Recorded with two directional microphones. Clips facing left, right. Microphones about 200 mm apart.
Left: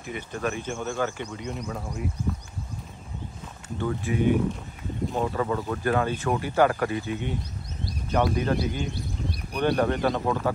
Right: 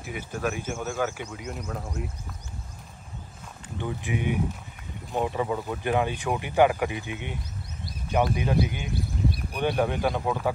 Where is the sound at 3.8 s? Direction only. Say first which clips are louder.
Left 4 dB; 15° right (ahead or behind).